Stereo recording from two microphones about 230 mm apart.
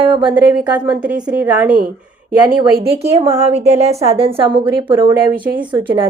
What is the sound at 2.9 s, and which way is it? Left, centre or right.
A woman's voice, right.